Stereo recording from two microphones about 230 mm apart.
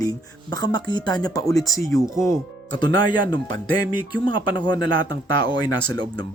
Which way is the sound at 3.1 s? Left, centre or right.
Centre.